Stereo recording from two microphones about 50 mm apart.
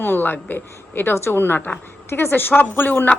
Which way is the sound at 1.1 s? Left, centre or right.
Left.